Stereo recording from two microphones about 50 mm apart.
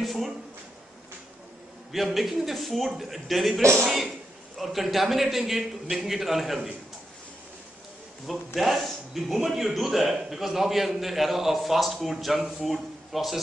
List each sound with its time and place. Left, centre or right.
0.0 s a sound: centre
2.1 s a man's voice: centre
8.5 s a man's voice: centre